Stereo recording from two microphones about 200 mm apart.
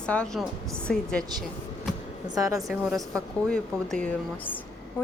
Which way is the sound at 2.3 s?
15° right (ahead or behind).